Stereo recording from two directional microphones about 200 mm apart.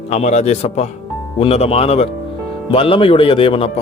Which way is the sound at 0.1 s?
35° left (ahead or behind).